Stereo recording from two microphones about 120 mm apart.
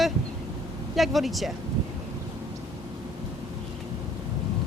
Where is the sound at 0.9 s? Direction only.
Centre (ahead or behind).